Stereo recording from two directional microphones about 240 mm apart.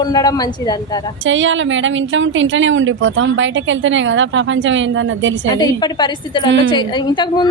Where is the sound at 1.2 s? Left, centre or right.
Right.